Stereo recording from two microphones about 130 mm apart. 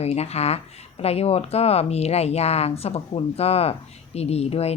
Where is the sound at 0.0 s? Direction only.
55° left (ahead or behind).